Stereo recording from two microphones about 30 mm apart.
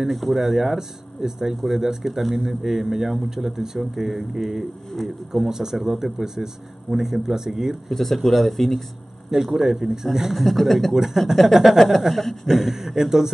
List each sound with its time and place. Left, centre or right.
0.1 s speech: centre
7.9 s speech: centre
9.3 s speech: centre
10.3 s speech: centre
10.9 s speech: centre